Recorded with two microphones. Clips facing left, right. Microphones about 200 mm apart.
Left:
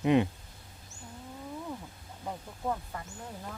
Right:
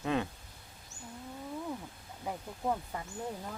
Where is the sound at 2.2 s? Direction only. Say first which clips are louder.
Even; 10° right (ahead or behind).